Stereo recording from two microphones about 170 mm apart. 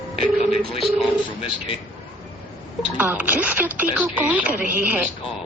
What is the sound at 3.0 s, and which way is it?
Speech, 10° right (ahead or behind).